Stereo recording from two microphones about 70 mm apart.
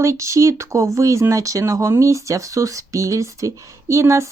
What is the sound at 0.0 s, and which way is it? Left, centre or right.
Speech, right.